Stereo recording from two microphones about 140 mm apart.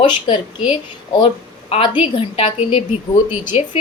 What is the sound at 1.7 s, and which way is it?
A woman's voice, 40° left (ahead or behind).